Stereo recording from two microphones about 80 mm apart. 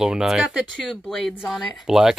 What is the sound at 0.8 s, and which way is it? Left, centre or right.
Speech, centre.